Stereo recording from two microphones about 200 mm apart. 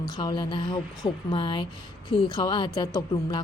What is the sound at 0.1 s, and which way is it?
Speech, 20° left (ahead or behind).